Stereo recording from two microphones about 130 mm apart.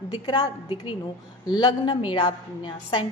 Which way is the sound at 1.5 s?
30° left (ahead or behind).